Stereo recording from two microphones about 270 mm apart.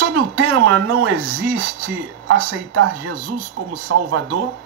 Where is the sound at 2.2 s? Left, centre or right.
Right.